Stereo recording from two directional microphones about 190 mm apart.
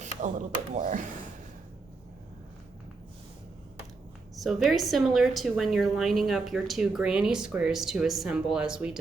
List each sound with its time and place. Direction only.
0.0 s speech: 40° right (ahead or behind)
4.4 s a woman's voice: centre (ahead or behind)